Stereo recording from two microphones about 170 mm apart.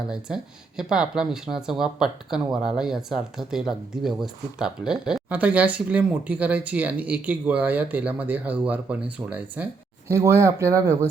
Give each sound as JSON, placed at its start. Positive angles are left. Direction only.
{"t": 0.8, "sound": "speech", "side_deg": -5}